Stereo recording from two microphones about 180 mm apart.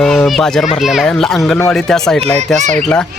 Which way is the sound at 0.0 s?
Centre (ahead or behind).